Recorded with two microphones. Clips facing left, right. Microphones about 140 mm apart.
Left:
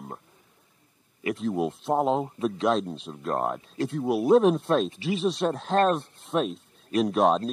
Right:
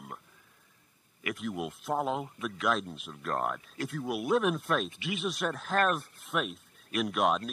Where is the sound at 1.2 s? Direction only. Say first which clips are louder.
Left 8 dB; 30° left (ahead or behind).